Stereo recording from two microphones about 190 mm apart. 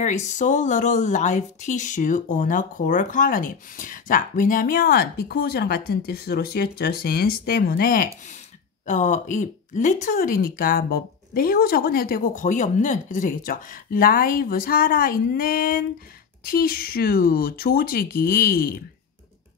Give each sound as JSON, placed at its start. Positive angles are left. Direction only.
{"t": 0.0, "sound": "speech", "side_deg": 40}